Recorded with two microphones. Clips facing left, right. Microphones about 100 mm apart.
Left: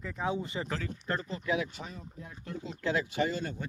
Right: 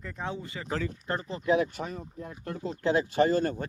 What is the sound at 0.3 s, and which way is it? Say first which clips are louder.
Speech: left 4 dB; 20° left (ahead or behind).